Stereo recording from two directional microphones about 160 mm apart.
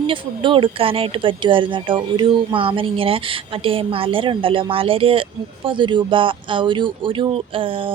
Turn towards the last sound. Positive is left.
turn(degrees=-35)  # may be behind; listen again after turning